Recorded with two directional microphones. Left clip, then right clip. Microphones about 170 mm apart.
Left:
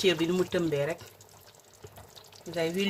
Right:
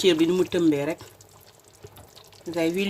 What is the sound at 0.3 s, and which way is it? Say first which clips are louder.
Speech: right 7 dB; 30° right (ahead or behind).